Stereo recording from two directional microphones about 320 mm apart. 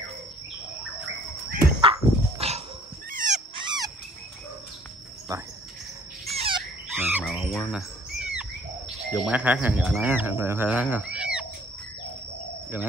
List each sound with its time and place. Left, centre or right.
1.6 s dog: centre
5.3 s cricket: centre
6.3 s frog: centre
7.0 s squawk: centre
9.1 s speech: centre